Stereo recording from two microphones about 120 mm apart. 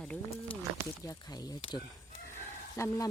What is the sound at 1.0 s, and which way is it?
Speech, 30° left (ahead or behind).